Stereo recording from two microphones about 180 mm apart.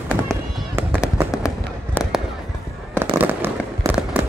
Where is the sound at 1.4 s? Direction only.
15° left (ahead or behind).